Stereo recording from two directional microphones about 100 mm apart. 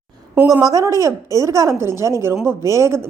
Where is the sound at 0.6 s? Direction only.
35° right (ahead or behind).